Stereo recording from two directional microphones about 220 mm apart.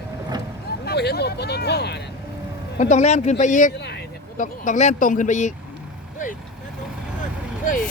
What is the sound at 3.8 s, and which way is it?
Vehicle, 50° left (ahead or behind).